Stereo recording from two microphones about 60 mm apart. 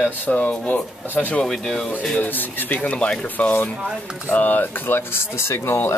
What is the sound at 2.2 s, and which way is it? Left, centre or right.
Speech, left.